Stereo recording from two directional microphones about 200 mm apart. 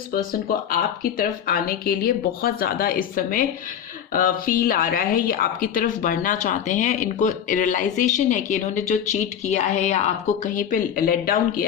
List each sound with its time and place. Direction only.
0.1 s a woman's voice: 45° left (ahead or behind)